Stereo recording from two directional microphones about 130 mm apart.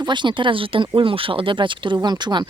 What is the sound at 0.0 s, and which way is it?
Speech, 35° right (ahead or behind).